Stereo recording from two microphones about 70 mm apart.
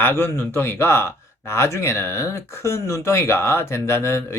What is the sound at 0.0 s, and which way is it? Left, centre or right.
Speech, left.